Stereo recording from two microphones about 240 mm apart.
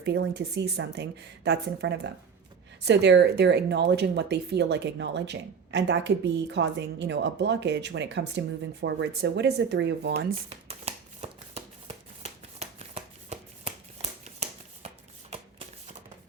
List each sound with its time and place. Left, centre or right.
0.0 s speech: right
10.7 s shuffling cards: right